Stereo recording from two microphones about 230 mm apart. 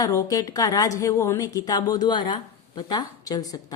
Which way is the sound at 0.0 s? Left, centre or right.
Centre.